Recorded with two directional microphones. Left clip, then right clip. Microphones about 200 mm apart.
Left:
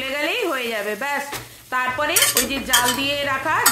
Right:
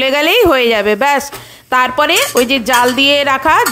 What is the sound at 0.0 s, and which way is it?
Speech, 50° right (ahead or behind).